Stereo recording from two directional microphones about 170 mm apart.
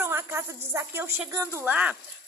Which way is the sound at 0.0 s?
15° right (ahead or behind).